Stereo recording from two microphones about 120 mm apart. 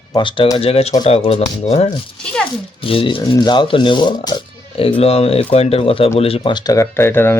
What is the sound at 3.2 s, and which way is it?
Speech, 35° left (ahead or behind).